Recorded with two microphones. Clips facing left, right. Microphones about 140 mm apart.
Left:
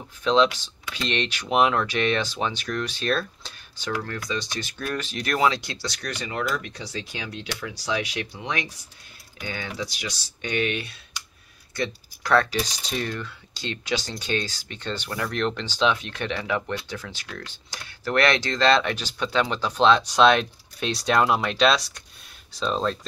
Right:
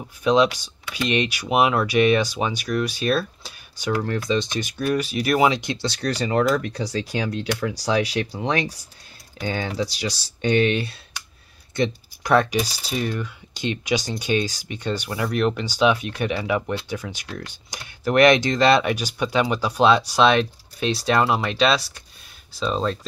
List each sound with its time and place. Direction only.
0.2 s speech: 10° right (ahead or behind)
4.0 s speech: 25° right (ahead or behind)
11.7 s speech: 20° right (ahead or behind); by 22.9 s 5° right (ahead or behind)